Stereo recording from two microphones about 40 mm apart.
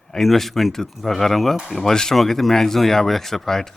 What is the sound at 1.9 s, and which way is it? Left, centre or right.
Speech, centre.